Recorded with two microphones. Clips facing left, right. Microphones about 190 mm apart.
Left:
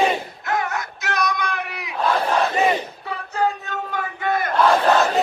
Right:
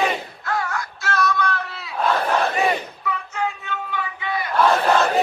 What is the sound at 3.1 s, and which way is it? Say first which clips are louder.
Battle cry: left 3 dB; 35° left (ahead or behind).